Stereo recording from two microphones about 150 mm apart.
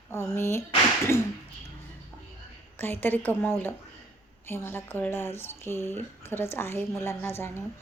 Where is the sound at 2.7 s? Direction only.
15° left (ahead or behind).